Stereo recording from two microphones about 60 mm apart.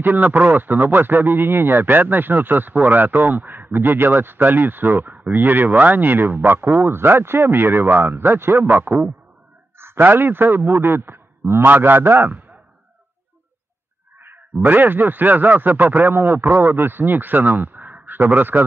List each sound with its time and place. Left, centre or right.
0.0 s a man's voice: right
14.6 s a man's voice: right